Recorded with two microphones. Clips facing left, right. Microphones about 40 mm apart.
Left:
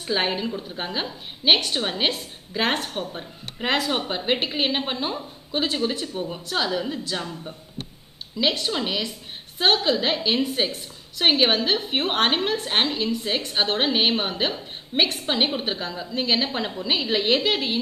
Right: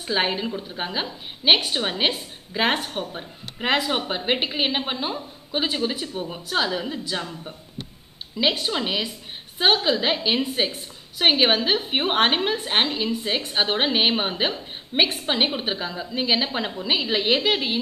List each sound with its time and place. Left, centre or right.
0.0 s a woman's voice: centre
8.4 s a woman's voice: centre